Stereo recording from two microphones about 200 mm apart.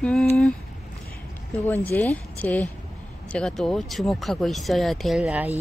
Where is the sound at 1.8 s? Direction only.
10° left (ahead or behind).